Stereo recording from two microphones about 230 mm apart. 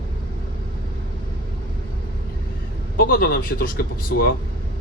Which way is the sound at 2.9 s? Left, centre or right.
Left.